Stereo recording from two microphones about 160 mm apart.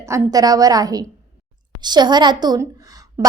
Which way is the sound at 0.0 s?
20° right (ahead or behind).